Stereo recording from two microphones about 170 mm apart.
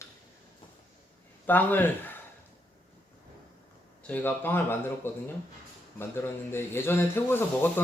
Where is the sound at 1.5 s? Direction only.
10° left (ahead or behind).